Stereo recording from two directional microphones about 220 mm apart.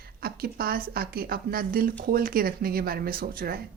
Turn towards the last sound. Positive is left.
turn(degrees=-40)  # may be behind; listen again after turning